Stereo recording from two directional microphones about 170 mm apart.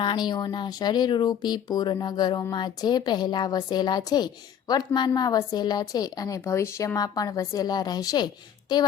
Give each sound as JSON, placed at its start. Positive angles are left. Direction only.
{"t": 0.0, "sound": "speech", "side_deg": 25}